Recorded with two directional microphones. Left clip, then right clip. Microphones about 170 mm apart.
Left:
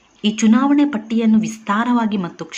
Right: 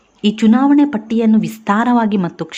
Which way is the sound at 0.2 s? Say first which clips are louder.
Right 3 dB; 30° right (ahead or behind).